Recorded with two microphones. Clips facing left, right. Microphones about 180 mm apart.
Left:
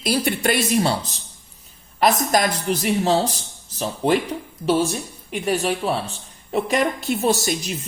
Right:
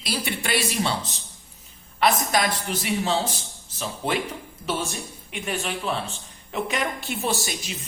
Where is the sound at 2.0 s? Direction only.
40° left (ahead or behind).